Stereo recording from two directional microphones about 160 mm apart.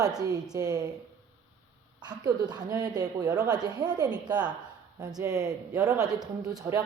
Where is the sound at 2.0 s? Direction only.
25° right (ahead or behind).